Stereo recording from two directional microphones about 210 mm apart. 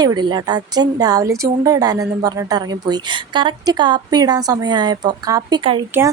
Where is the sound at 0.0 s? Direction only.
20° right (ahead or behind).